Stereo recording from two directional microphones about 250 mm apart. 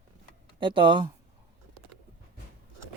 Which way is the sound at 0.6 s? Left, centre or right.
Centre.